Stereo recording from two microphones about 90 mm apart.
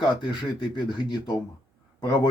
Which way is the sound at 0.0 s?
55° left (ahead or behind).